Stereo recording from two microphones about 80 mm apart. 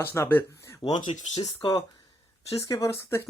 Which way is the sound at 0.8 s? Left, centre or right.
Left.